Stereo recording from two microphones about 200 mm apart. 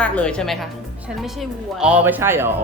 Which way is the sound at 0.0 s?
5° left (ahead or behind).